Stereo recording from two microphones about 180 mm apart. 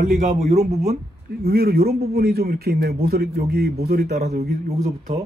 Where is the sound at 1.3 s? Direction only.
60° right (ahead or behind).